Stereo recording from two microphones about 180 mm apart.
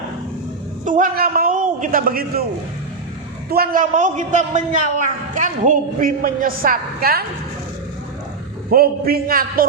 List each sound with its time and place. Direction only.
0.9 s a man's voice: 50° right (ahead or behind)
3.5 s a man's voice: 55° right (ahead or behind)
8.7 s a man's voice: 55° right (ahead or behind)